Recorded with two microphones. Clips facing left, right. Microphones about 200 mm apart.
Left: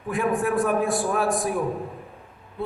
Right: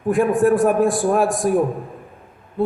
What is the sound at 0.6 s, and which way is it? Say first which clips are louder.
Speech: right 6 dB; 50° right (ahead or behind).